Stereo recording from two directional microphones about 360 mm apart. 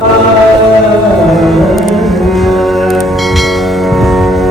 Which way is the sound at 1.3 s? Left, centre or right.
Centre.